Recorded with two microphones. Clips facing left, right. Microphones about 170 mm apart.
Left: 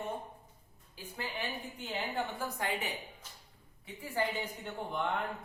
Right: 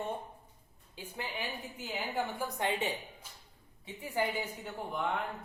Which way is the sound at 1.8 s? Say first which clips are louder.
Right 1 dB; 5° right (ahead or behind).